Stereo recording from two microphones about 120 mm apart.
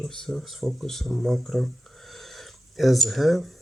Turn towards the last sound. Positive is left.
turn(degrees=0)  # may be behind; listen again after turning